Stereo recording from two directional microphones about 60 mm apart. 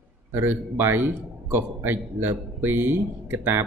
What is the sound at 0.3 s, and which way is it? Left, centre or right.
A man's voice, right.